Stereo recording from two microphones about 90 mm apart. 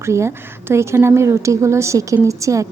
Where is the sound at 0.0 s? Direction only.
30° right (ahead or behind).